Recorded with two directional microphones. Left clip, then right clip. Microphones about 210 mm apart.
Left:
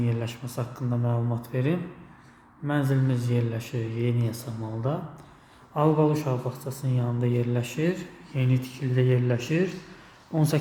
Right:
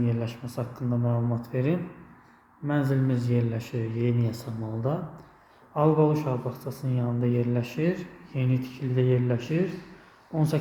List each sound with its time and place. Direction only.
0.0 s speech: 10° left (ahead or behind)